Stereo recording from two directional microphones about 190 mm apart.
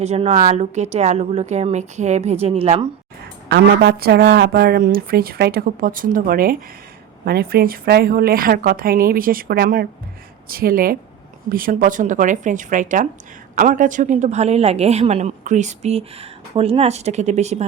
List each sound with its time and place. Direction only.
0.0 s a woman's voice: 35° right (ahead or behind)
3.5 s a woman's voice: 55° right (ahead or behind); by 17.7 s 35° right (ahead or behind)